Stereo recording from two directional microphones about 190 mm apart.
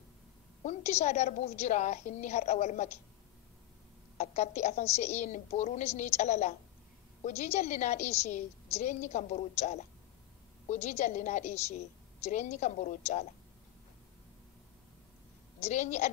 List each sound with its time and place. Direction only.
0.7 s a woman's voice: 35° left (ahead or behind)
4.2 s a woman's voice: 35° left (ahead or behind)
15.6 s a woman's voice: 35° left (ahead or behind)